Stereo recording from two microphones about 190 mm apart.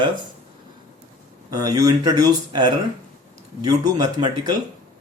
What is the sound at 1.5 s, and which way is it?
Speech, 20° right (ahead or behind).